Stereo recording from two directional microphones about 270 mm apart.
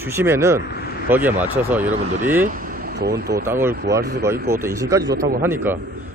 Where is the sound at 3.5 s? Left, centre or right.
Centre.